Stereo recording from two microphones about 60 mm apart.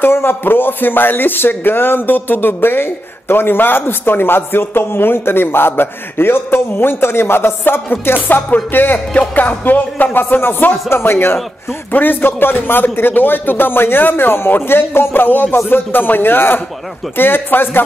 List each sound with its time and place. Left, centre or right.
0.0 s speech: left
9.3 s music: left
10.1 s speech: left